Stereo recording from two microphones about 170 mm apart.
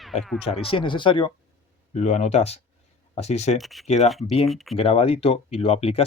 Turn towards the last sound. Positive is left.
turn(degrees=35)  # may be behind; listen again after turning